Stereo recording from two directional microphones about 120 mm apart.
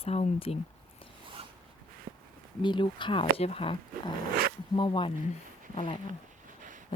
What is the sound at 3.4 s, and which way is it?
Speech, 55° left (ahead or behind).